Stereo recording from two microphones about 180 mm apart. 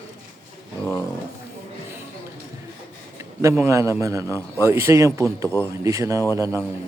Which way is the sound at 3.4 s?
15° right (ahead or behind).